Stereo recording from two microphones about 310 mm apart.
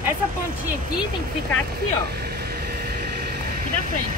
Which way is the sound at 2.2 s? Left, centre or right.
Right.